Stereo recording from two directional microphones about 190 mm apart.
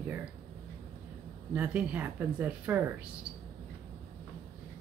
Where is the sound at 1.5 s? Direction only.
5° right (ahead or behind).